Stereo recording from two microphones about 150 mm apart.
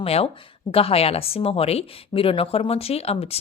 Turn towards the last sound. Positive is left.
turn(degrees=40)  # may be behind; listen again after turning